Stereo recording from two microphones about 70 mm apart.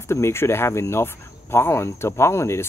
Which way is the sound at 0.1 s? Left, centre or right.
Left.